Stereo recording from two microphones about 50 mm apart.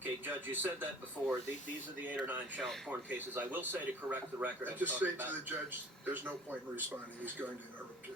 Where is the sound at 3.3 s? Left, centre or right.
Right.